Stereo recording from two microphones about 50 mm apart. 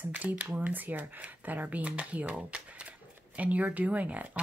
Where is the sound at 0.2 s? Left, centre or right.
Right.